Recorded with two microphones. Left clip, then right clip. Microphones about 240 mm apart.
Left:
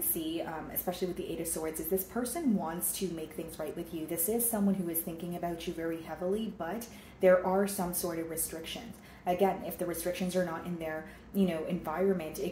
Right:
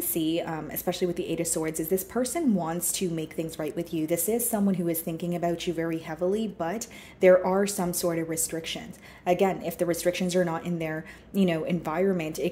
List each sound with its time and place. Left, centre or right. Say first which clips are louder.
0.3 s a woman's voice: right 7 dB; right
9.2 s a woman's voice: right 5 dB; right